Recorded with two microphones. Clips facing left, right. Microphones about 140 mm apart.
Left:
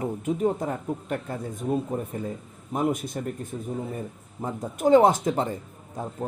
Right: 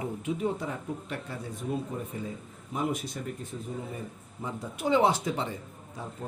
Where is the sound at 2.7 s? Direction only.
50° left (ahead or behind).